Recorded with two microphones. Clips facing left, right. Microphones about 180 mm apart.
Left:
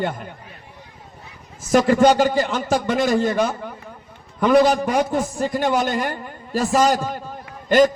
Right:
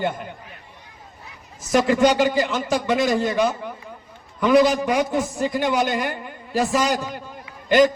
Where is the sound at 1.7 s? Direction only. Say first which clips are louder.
Left 3 dB; 50° left (ahead or behind).